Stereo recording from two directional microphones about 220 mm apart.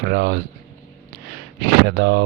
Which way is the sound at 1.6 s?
45° right (ahead or behind).